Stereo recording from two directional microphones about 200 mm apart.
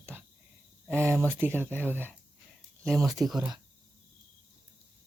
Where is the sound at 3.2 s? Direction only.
Centre (ahead or behind).